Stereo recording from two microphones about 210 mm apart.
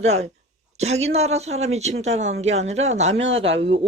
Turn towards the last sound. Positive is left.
turn(degrees=-30)  # may be behind; listen again after turning